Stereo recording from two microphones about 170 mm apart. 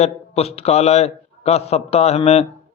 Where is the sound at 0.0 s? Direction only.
35° left (ahead or behind).